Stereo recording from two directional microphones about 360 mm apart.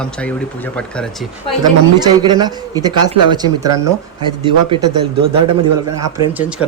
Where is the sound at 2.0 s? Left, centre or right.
Centre.